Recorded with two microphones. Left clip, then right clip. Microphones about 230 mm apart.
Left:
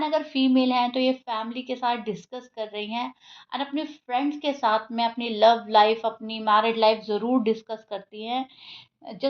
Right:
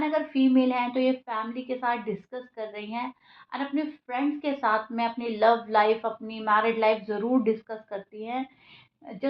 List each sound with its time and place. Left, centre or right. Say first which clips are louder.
0.0 s a woman's voice: left 1 dB; left